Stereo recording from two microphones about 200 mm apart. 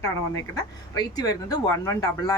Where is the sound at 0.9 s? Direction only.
20° left (ahead or behind).